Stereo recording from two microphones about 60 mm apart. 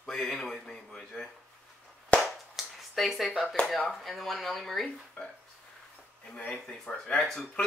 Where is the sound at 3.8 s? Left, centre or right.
Centre.